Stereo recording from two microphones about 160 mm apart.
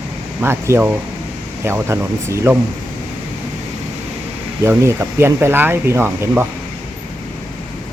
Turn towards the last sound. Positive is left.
turn(degrees=-15)  # may be behind; listen again after turning